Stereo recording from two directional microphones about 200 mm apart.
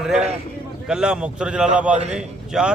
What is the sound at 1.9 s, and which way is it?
Speech, 35° right (ahead or behind).